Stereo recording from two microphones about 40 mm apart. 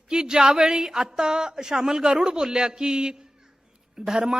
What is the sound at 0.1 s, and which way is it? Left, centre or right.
A woman's voice, centre.